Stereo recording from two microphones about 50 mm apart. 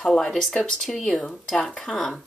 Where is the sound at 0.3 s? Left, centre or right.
Centre.